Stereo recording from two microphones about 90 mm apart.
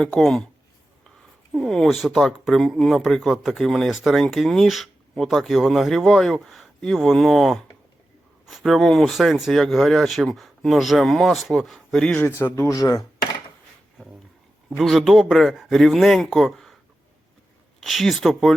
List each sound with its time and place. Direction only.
0.2 s speech: 5° left (ahead or behind)
1.5 s speech: 5° left (ahead or behind)
12.4 s speech: 25° left (ahead or behind)
12.6 s speech: 40° left (ahead or behind)
14.8 s speech: centre (ahead or behind)
17.8 s speech: centre (ahead or behind)